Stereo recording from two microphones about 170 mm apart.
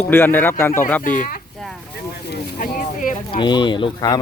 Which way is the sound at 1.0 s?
50° left (ahead or behind).